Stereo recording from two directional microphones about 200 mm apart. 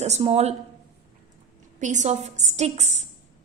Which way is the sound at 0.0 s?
35° right (ahead or behind).